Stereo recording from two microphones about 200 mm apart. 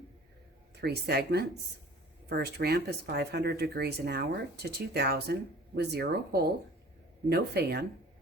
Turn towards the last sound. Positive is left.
turn(degrees=-55)  # may be behind; listen again after turning